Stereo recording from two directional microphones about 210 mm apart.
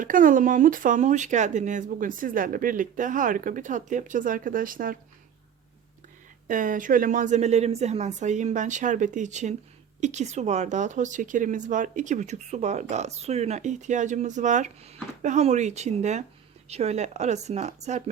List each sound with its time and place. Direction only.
0.0 s speech: 40° right (ahead or behind)
6.5 s speech: 40° right (ahead or behind)